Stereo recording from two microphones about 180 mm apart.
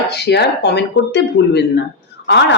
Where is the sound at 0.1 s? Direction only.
65° left (ahead or behind).